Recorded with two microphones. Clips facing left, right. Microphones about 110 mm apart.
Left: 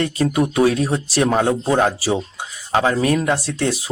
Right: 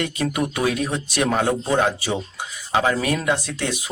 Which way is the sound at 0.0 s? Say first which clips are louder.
Left 5 dB; 30° left (ahead or behind).